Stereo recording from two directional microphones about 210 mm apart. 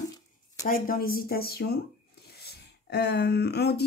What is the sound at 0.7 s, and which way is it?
Speech, 45° left (ahead or behind).